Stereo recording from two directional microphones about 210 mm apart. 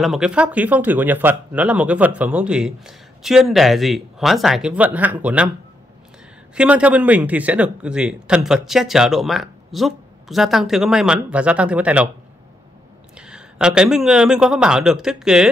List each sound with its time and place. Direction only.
0.0 s a man's voice: centre (ahead or behind)
6.5 s a man's voice: 5° right (ahead or behind)
13.2 s a man's voice: 5° right (ahead or behind)